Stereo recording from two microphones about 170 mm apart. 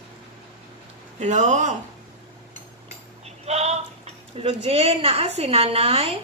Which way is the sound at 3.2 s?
40° right (ahead or behind).